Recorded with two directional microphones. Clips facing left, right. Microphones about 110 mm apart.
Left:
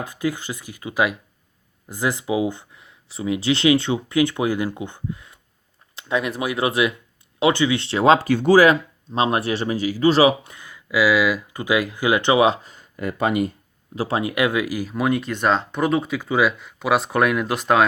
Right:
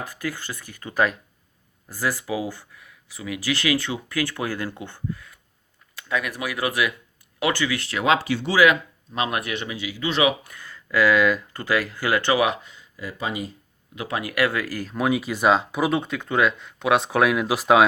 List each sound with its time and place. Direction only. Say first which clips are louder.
0.0 s speech: left 5 dB; 20° left (ahead or behind)
10.5 s speech: left 1 dB; 15° left (ahead or behind)
12.6 s speech: left 7 dB; 45° left (ahead or behind)
13.9 s speech: left 5 dB; 30° left (ahead or behind); by 17.8 s 5° right (ahead or behind)